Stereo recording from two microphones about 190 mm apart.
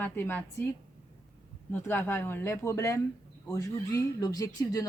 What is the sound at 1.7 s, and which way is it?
Speech, 10° left (ahead or behind).